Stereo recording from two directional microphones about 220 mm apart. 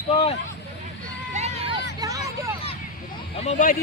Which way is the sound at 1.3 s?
30° right (ahead or behind).